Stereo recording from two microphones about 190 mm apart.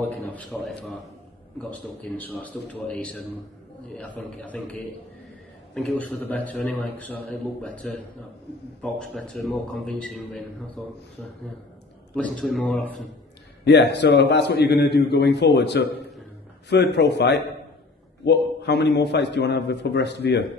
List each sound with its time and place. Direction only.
0.3 s a man's voice: 10° left (ahead or behind)
12.4 s a man's voice: 5° left (ahead or behind)
13.7 s a man's voice: 65° left (ahead or behind)